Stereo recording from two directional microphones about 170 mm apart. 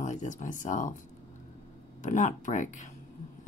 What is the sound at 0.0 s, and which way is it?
Speech, 45° left (ahead or behind).